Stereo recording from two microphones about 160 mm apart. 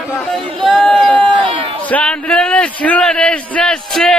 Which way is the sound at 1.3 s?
30° right (ahead or behind).